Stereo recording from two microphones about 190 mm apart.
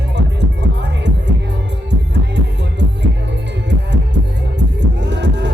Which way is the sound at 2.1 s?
65° right (ahead or behind).